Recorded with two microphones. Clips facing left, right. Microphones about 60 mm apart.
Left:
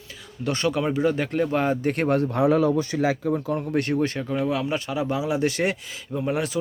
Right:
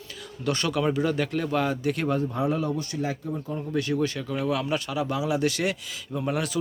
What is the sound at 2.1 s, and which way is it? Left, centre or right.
Speech, left.